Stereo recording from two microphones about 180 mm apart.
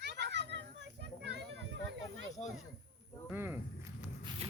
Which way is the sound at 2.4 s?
35° left (ahead or behind).